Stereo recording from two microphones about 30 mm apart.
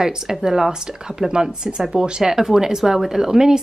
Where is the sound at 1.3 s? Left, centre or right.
Right.